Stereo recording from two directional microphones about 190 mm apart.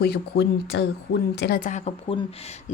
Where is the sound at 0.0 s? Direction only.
55° left (ahead or behind).